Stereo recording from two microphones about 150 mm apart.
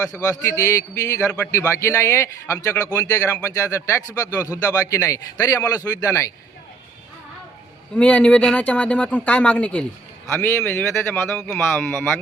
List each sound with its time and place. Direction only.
0.3 s speech: 20° left (ahead or behind)
7.9 s speech: 5° left (ahead or behind)